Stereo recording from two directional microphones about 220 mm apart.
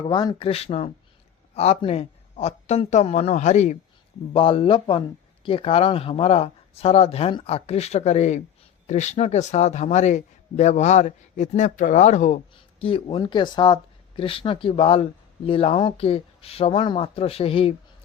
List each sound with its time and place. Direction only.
0.0 s a man's voice: 20° left (ahead or behind)